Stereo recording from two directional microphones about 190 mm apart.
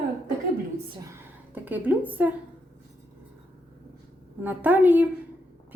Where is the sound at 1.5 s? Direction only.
10° right (ahead or behind).